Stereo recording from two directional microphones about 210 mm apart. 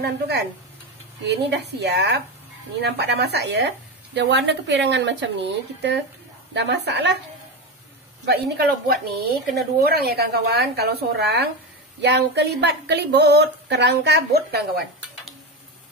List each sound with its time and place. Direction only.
0.0 s a woman's voice: 50° right (ahead or behind)
6.5 s a woman's voice: 55° right (ahead or behind)
8.3 s a woman's voice: 50° right (ahead or behind)